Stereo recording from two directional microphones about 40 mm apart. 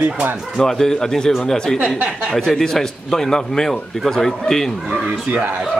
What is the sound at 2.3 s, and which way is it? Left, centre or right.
Speech, centre.